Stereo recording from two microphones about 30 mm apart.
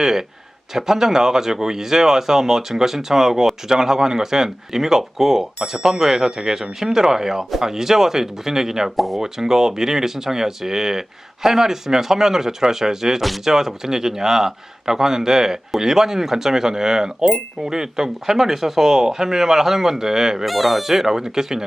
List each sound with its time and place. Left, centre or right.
0.0 s speech: centre
9.0 s speech: centre
9.2 s speech: centre
20.4 s speech: centre